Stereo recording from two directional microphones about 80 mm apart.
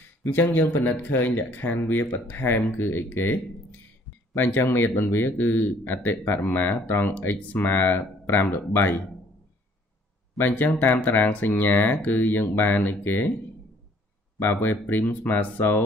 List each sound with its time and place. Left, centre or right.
0.2 s speech: left
4.4 s speech: left
10.3 s speech: left
14.4 s speech: left